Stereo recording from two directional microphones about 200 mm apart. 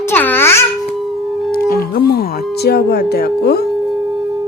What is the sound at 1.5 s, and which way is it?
Music, 45° left (ahead or behind).